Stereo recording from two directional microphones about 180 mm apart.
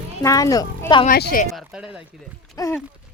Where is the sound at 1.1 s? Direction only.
50° left (ahead or behind).